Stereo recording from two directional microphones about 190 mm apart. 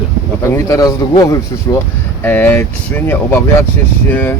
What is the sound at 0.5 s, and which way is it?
Speech, 15° left (ahead or behind).